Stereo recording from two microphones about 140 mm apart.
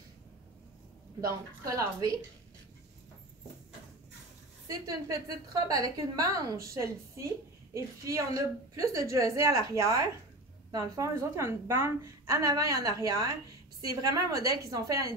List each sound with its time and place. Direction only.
1.2 s a woman's voice: 25° right (ahead or behind)
4.6 s a woman's voice: 25° right (ahead or behind)